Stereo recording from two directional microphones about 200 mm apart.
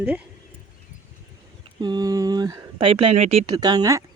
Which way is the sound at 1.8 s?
20° right (ahead or behind).